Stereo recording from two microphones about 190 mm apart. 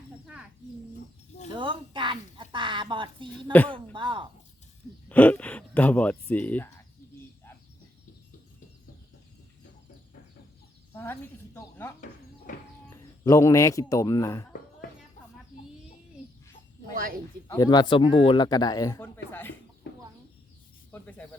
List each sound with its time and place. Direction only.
1.5 s speech: 25° right (ahead or behind)
5.0 s speech: 10° left (ahead or behind)
10.9 s a sound: 10° left (ahead or behind)
12.5 s a sound: 40° left (ahead or behind)
13.2 s a man's voice: 15° left (ahead or behind)
16.9 s speech: 50° right (ahead or behind)
17.5 s a man's voice: 20° left (ahead or behind)
19.9 s chicken: 65° left (ahead or behind)
20.9 s snake: 10° left (ahead or behind)